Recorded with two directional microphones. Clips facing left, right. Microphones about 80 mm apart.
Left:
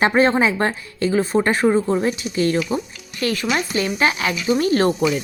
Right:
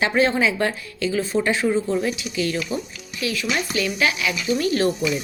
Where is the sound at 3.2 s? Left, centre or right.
Left.